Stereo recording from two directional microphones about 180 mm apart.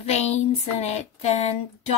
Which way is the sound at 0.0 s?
40° left (ahead or behind).